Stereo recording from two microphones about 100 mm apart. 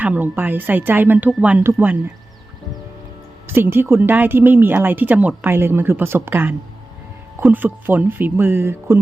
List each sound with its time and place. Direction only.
0.0 s speech: 20° right (ahead or behind)
3.4 s speech: 20° right (ahead or behind)